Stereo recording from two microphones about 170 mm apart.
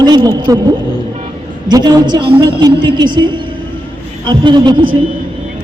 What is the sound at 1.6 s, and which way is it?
A woman's voice, 25° right (ahead or behind).